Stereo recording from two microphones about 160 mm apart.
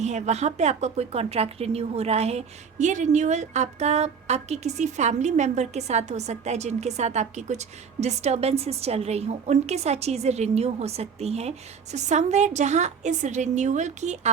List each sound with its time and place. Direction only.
0.0 s speech: 45° right (ahead or behind)